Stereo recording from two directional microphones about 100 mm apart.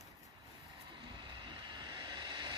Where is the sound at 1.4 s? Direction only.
50° right (ahead or behind).